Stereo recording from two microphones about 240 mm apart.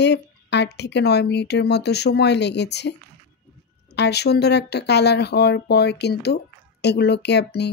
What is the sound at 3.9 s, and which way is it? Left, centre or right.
Speech, left.